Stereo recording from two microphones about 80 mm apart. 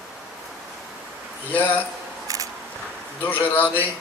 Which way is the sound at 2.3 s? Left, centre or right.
Right.